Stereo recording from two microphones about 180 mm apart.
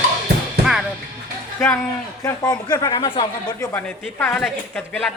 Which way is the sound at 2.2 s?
20° left (ahead or behind).